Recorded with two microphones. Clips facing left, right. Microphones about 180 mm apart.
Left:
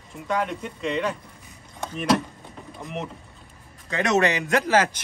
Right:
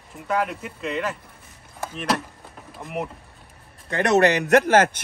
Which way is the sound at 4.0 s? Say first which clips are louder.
Right 3 dB; 65° right (ahead or behind).